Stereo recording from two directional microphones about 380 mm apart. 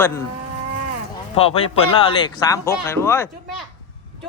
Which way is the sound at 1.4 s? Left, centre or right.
Centre.